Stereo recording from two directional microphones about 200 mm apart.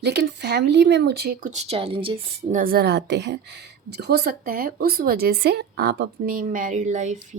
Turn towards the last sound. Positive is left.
turn(degrees=-40)  # may be behind; listen again after turning